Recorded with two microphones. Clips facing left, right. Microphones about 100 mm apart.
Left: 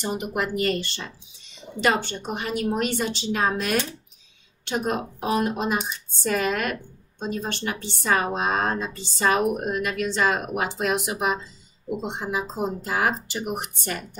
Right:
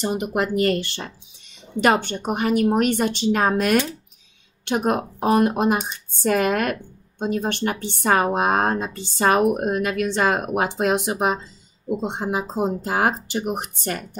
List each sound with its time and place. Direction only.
0.1 s a woman's voice: 45° right (ahead or behind)